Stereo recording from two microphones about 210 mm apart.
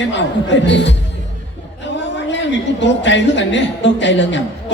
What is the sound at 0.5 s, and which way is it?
Speech, 60° left (ahead or behind).